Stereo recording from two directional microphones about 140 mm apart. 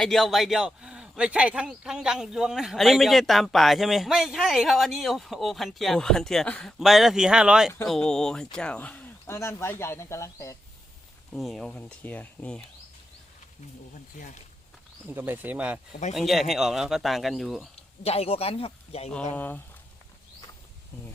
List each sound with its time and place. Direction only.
0.0 s a man's voice: centre (ahead or behind); by 10.6 s 20° left (ahead or behind)
11.3 s a man's voice: centre (ahead or behind)
11.7 s speech: 10° left (ahead or behind)
15.0 s speech: 15° right (ahead or behind)
15.9 s speech: 60° left (ahead or behind)
16.1 s a man's voice: centre (ahead or behind)
18.0 s speech: 45° left (ahead or behind)
19.3 s speech: 15° left (ahead or behind)